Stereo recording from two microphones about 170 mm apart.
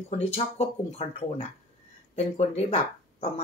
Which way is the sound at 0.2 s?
40° left (ahead or behind).